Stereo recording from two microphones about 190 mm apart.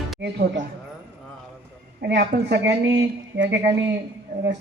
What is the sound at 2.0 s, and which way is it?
A woman's voice, 60° right (ahead or behind).